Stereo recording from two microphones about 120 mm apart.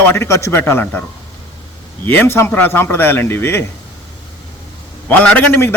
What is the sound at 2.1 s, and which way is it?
A man's voice, 20° left (ahead or behind).